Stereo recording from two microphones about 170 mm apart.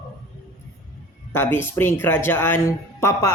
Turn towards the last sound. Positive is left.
turn(degrees=15)  # may be behind; listen again after turning